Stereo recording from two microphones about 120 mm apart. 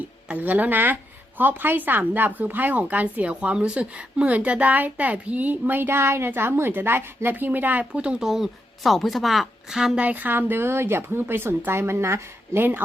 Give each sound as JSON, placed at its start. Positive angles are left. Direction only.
{"t": 0.3, "sound": "a woman's voice", "side_deg": -15}